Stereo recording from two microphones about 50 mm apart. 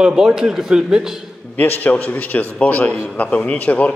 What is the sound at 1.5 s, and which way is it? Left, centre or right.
A man's voice, left.